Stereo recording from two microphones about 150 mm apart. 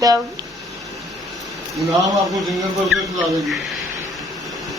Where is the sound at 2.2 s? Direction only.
Centre (ahead or behind).